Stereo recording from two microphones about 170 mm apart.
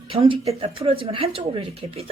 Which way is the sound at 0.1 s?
30° right (ahead or behind).